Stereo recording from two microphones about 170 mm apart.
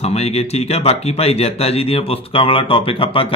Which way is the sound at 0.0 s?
35° left (ahead or behind).